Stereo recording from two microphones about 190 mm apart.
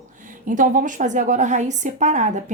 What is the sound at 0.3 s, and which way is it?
A woman's voice, 45° right (ahead or behind).